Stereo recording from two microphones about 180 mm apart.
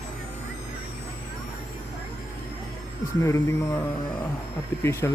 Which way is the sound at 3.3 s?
15° left (ahead or behind).